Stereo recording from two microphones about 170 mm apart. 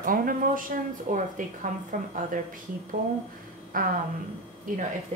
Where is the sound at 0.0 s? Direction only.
55° right (ahead or behind).